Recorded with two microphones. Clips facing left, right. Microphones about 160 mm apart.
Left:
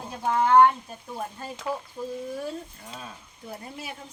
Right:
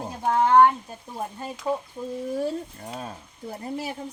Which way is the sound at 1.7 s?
5° right (ahead or behind).